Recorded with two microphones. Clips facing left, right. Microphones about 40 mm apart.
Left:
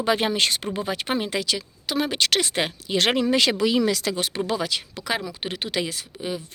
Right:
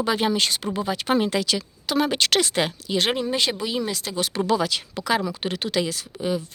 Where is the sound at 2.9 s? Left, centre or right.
Left.